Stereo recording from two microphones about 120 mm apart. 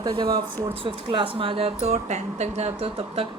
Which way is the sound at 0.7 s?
45° right (ahead or behind).